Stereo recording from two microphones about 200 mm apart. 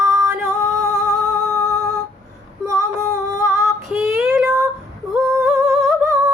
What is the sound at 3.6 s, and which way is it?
Child singing, centre (ahead or behind).